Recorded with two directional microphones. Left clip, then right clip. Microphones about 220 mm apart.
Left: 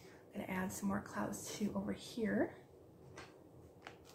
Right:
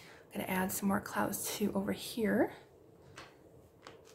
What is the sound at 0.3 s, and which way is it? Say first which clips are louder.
Speech: right 7 dB; 45° right (ahead or behind).